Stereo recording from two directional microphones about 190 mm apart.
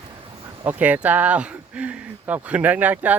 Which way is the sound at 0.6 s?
10° right (ahead or behind).